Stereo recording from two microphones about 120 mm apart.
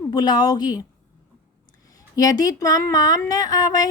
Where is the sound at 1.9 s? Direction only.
30° left (ahead or behind).